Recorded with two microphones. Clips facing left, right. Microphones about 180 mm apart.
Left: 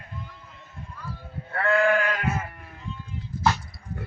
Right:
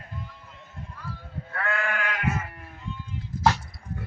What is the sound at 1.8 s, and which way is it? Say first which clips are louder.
Sheep: left 9 dB; 35° left (ahead or behind).